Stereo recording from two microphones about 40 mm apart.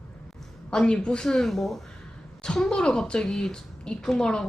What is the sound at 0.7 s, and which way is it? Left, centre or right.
Speech, left.